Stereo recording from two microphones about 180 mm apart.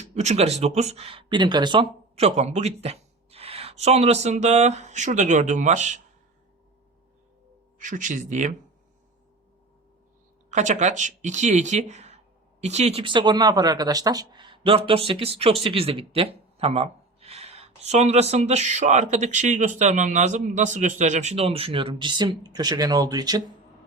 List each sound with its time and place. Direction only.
0.0 s speech: 40° right (ahead or behind)
7.8 s speech: 45° right (ahead or behind)
10.5 s speech: 40° right (ahead or behind); by 23.4 s 20° right (ahead or behind)